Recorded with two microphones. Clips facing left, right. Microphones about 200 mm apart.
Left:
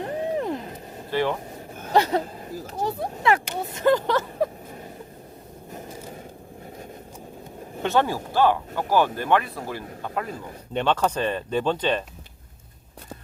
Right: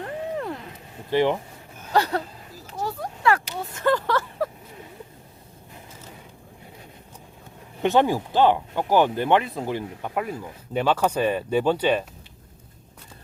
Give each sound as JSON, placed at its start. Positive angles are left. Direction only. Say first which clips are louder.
{"t": 0.0, "sound": "vehicle", "louder": "left 3 dB", "side_deg": 20}
{"t": 1.1, "sound": "speech", "louder": "right 3 dB", "side_deg": -15}
{"t": 1.9, "sound": "speech", "louder": "left 2 dB", "side_deg": 20}
{"t": 2.8, "sound": "a sound", "louder": "even", "side_deg": 20}
{"t": 7.8, "sound": "speech", "louder": "right 3 dB", "side_deg": -15}